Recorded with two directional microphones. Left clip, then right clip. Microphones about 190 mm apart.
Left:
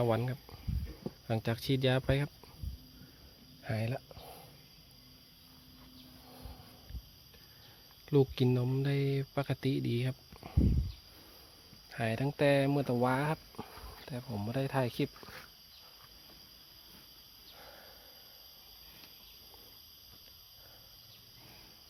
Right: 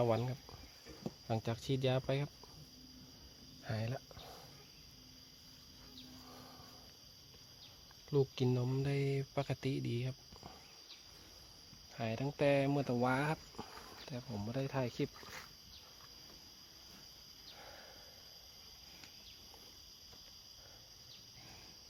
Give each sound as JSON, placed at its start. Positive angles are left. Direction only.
{"t": 0.0, "sound": "speech", "side_deg": 10}
{"t": 3.6, "sound": "cricket", "side_deg": 15}
{"t": 8.1, "sound": "speech", "side_deg": 20}
{"t": 8.6, "sound": "speech", "side_deg": 5}
{"t": 11.9, "sound": "speech", "side_deg": 15}